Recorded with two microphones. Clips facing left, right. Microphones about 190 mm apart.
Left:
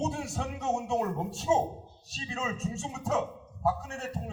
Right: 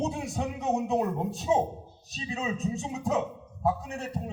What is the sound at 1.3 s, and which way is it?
Speech, 15° right (ahead or behind).